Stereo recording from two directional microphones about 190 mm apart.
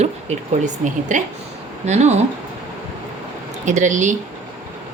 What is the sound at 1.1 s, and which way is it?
Speech, 40° right (ahead or behind).